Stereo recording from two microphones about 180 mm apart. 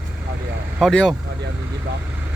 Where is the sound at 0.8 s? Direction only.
5° left (ahead or behind).